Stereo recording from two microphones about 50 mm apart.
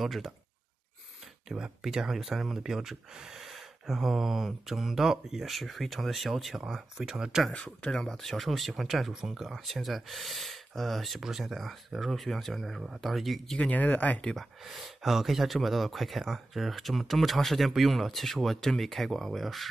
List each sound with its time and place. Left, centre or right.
0.0 s speech: centre
1.5 s speech: centre
7.5 s speech: centre
8.1 s speech: centre
13.6 s speech: left
14.3 s speech: centre